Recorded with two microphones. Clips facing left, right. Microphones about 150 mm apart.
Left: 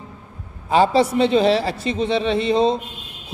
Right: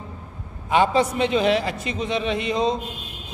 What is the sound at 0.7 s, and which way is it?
A woman's voice, 35° left (ahead or behind).